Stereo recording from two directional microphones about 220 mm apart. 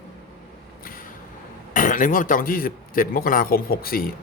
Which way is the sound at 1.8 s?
35° left (ahead or behind).